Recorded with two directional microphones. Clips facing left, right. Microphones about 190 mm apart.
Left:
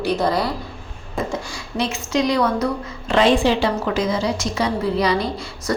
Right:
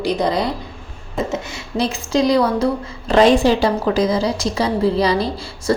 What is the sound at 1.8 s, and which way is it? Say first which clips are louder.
A woman's voice: right 3 dB; 35° right (ahead or behind).